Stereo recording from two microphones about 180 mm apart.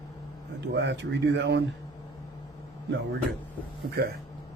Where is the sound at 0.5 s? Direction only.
75° right (ahead or behind).